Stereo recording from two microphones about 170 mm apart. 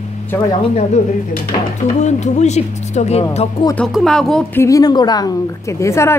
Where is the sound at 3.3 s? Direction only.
35° left (ahead or behind).